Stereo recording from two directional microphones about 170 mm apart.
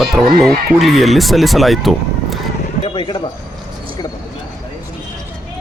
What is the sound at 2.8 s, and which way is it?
Speech, 30° left (ahead or behind).